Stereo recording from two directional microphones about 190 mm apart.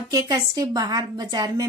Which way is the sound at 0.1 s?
20° right (ahead or behind).